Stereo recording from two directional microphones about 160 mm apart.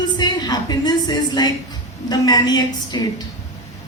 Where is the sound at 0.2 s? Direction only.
25° left (ahead or behind).